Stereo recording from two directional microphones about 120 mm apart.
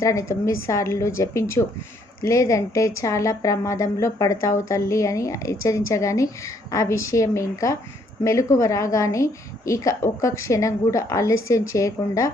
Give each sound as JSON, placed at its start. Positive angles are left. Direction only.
{"t": 0.0, "sound": "a woman's voice", "side_deg": 25}